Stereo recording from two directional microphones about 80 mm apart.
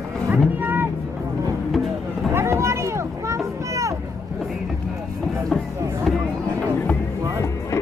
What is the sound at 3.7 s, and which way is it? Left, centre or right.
Boat, right.